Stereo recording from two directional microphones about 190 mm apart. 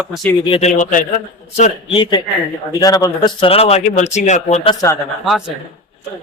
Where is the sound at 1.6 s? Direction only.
30° left (ahead or behind).